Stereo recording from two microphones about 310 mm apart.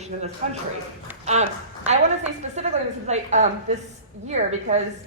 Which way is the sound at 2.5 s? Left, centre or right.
Right.